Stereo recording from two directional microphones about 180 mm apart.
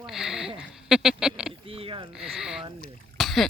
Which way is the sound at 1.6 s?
30° right (ahead or behind).